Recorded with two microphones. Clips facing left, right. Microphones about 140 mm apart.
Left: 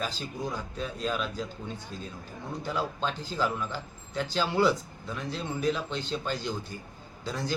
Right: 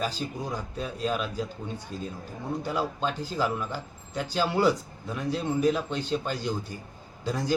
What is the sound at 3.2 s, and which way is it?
Speech, 10° right (ahead or behind).